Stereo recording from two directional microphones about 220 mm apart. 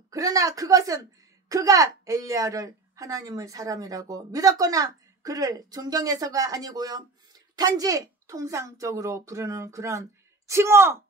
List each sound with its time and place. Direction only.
0.1 s a woman's voice: 15° right (ahead or behind)